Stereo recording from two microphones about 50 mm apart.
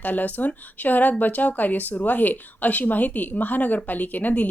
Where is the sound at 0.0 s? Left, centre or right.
Left.